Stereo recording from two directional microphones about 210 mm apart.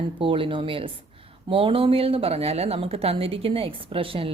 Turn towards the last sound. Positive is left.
turn(degrees=-25)  # may be behind; listen again after turning